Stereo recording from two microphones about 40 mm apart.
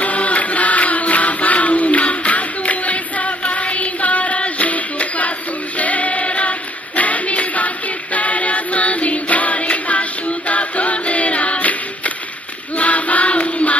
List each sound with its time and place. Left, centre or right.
0.0 s a sound: left
7.0 s music: left
12.7 s choir: left